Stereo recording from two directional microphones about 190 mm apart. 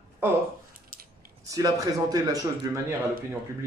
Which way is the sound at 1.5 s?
20° right (ahead or behind).